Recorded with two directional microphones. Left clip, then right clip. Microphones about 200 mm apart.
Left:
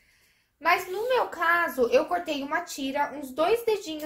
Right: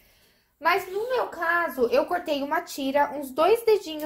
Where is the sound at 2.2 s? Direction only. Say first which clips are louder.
Right 3 dB; 35° right (ahead or behind).